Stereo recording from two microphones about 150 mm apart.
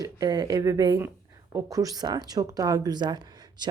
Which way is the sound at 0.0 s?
25° right (ahead or behind).